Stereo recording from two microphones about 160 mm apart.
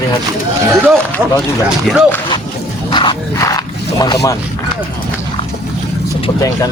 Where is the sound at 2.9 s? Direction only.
30° left (ahead or behind).